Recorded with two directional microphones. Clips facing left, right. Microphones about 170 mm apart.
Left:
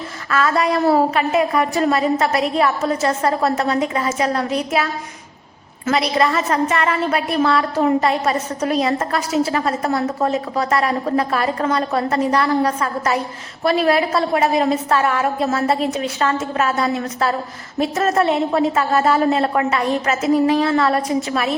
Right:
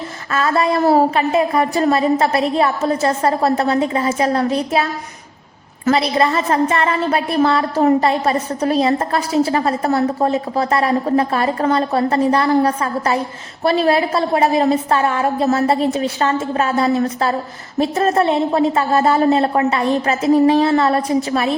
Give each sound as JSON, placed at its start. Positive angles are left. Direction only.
{"t": 0.3, "sound": "a woman's voice", "side_deg": -30}